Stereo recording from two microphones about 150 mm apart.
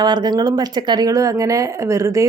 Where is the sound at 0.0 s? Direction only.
30° right (ahead or behind).